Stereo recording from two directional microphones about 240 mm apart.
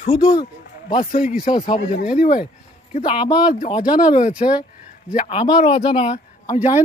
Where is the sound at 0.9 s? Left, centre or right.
Left.